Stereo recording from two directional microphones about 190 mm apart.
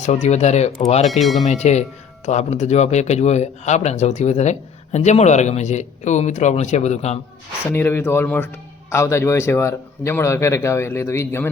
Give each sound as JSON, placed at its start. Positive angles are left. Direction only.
{"t": 0.0, "sound": "speech", "side_deg": 35}
{"t": 1.2, "sound": "speech", "side_deg": 0}
{"t": 1.5, "sound": "speech", "side_deg": 35}
{"t": 7.7, "sound": "a man's voice", "side_deg": 10}